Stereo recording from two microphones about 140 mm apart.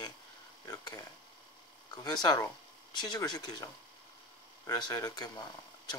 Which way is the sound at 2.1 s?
30° left (ahead or behind).